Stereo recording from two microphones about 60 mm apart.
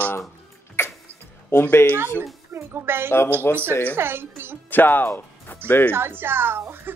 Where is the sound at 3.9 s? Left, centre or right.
Right.